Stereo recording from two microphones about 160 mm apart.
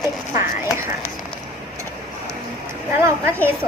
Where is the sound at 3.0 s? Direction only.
15° right (ahead or behind).